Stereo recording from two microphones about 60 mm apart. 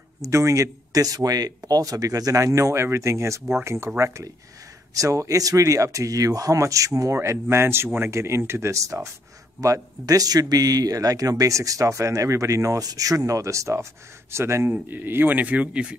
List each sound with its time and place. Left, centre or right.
0.2 s speech: right
9.6 s speech: right
14.3 s speech: right
14.7 s speech: right